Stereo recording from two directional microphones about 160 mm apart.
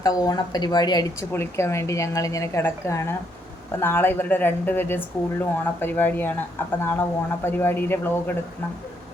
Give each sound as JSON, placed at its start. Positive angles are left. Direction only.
{"t": 0.0, "sound": "speech", "side_deg": 25}